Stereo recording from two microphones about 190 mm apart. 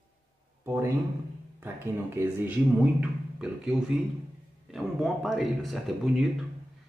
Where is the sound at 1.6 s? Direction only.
10° right (ahead or behind).